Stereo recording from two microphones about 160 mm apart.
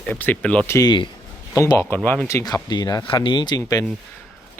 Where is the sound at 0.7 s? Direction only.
25° left (ahead or behind).